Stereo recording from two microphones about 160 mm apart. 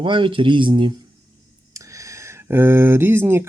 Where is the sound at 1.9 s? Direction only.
20° right (ahead or behind).